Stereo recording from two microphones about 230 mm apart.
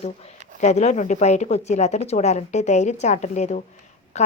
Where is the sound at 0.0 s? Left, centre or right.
Left.